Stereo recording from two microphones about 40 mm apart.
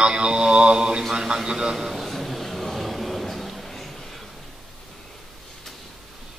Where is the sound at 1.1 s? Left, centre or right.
Centre.